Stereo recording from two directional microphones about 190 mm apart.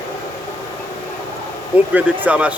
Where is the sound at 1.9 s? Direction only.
10° right (ahead or behind).